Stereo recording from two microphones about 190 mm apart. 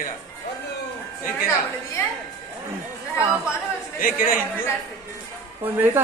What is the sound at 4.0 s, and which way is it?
Speech, 45° left (ahead or behind).